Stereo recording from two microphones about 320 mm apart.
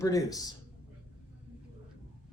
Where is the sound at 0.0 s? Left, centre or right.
Centre.